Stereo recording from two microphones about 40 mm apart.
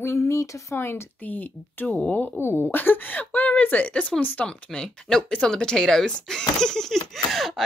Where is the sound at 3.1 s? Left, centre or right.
Left.